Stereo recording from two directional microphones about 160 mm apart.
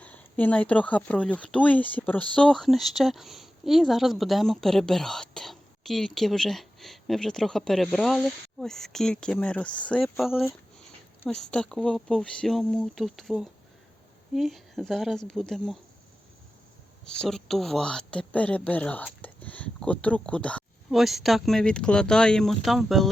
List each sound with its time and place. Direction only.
0.0 s speech: 10° left (ahead or behind)
11.5 s speech: 5° left (ahead or behind)
17.1 s speech: 5° left (ahead or behind)